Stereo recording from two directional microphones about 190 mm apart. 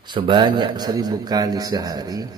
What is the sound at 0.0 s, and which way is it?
A man's voice, 25° right (ahead or behind).